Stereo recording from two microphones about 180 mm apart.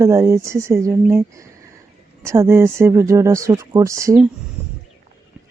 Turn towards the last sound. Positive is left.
turn(degrees=-15)  # may be behind; listen again after turning